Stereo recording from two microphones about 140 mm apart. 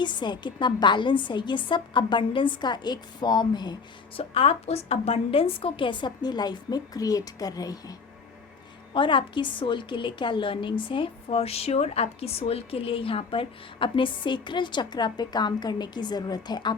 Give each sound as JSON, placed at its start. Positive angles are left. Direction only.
{"t": 0.0, "sound": "a woman's voice", "side_deg": 35}
{"t": 4.2, "sound": "a woman's voice", "side_deg": 45}
{"t": 8.9, "sound": "a woman's voice", "side_deg": 35}